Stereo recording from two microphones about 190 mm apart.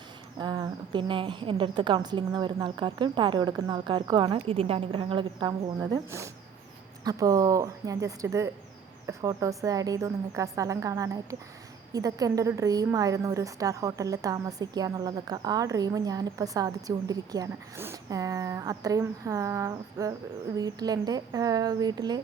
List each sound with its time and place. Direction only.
0.3 s a woman's voice: 20° right (ahead or behind)